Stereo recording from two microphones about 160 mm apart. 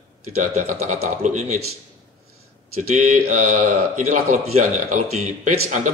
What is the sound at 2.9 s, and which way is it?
Speech, 50° right (ahead or behind).